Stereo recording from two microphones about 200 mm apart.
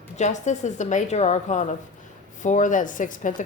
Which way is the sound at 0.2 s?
35° left (ahead or behind).